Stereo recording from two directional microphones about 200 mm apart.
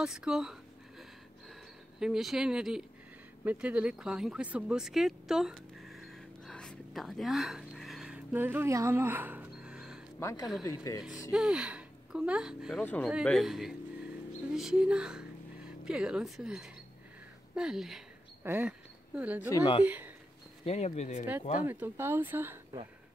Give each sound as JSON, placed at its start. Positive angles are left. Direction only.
{"t": 0.0, "sound": "a sound", "side_deg": -5}
{"t": 2.0, "sound": "speech", "side_deg": -5}
{"t": 3.4, "sound": "a sound", "side_deg": -5}
{"t": 10.1, "sound": "speech", "side_deg": 15}
{"t": 11.3, "sound": "speech", "side_deg": -5}
{"t": 17.6, "sound": "a sound", "side_deg": -5}
{"t": 18.5, "sound": "speech", "side_deg": -10}
{"t": 19.5, "sound": "speech", "side_deg": 20}
{"t": 20.6, "sound": "speech", "side_deg": 30}
{"t": 21.6, "sound": "speech", "side_deg": -10}